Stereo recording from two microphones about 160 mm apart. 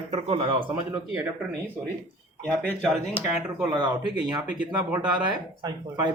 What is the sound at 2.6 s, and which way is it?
Speech, 10° left (ahead or behind).